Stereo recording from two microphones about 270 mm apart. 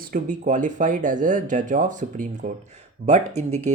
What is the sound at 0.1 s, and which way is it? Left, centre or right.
Speech, right.